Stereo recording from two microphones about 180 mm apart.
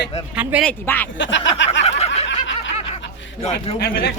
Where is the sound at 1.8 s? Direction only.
35° left (ahead or behind).